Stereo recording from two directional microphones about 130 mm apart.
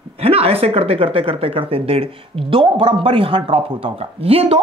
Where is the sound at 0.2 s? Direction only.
50° right (ahead or behind).